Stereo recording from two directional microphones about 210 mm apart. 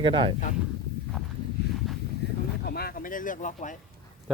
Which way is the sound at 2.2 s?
55° left (ahead or behind).